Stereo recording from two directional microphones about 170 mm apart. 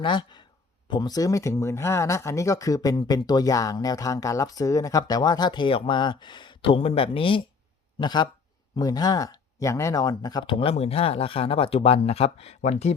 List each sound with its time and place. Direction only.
0.0 s speech: 25° left (ahead or behind)